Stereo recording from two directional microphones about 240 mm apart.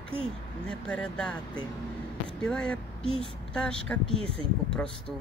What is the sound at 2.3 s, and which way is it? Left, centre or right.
Speech, centre.